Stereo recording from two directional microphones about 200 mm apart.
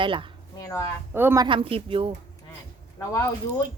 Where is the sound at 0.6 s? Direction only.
15° left (ahead or behind).